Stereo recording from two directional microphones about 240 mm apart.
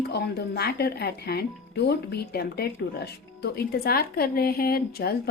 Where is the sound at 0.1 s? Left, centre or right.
Left.